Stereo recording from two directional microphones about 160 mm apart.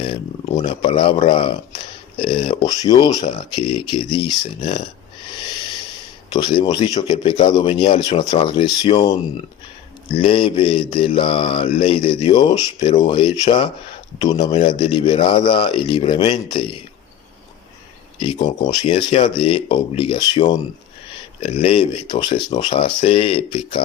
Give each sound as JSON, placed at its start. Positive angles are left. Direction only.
{"t": 0.0, "sound": "a man's voice", "side_deg": 30}
{"t": 6.3, "sound": "a man's voice", "side_deg": 25}
{"t": 18.2, "sound": "a man's voice", "side_deg": 30}